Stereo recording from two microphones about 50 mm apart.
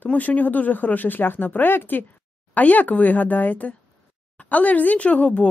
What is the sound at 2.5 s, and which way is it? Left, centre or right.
Speech, left.